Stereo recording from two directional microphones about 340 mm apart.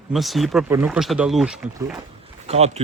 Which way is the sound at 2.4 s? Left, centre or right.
Centre.